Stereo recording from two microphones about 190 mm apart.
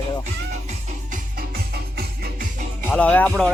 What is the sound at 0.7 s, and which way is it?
Music, 45° right (ahead or behind).